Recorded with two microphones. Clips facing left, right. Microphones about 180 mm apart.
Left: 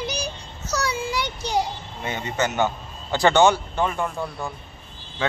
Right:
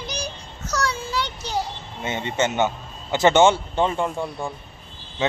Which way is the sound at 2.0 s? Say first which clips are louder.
Right 2 dB; 25° right (ahead or behind).